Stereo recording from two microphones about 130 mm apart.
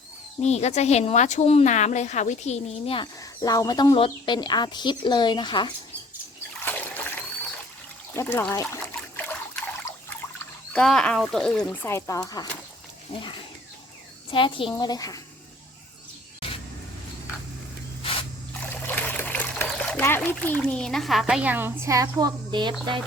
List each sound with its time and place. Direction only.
0.4 s speech: 60° left (ahead or behind)
3.2 s speech: 25° left (ahead or behind)
6.6 s trickle: 15° left (ahead or behind)
8.1 s speech: 20° left (ahead or behind)
8.7 s trickle: 20° left (ahead or behind)
10.7 s speech: 5° left (ahead or behind); by 12.5 s 30° left (ahead or behind)
14.3 s speech: 40° left (ahead or behind)
18.0 s spray: 45° left (ahead or behind)
18.6 s trickle: 15° left (ahead or behind); by 22.3 s 25° right (ahead or behind)
22.5 s a sound: 35° right (ahead or behind)